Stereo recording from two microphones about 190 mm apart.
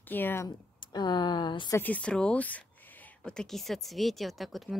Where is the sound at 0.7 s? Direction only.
25° left (ahead or behind).